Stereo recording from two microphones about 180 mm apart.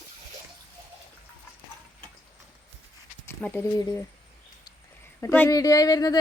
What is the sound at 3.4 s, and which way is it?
Speech, 10° left (ahead or behind).